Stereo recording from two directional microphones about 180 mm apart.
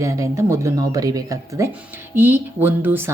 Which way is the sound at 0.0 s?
15° right (ahead or behind).